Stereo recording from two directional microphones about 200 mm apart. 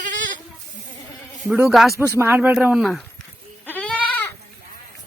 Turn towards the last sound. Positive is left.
turn(degrees=5)  # may be behind; listen again after turning